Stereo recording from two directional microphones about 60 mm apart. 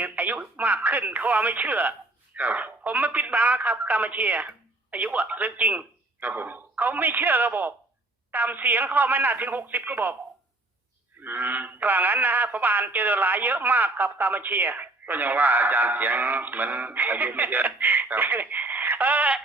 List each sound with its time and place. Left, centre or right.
0.0 s a man's voice: right
11.2 s a man's voice: right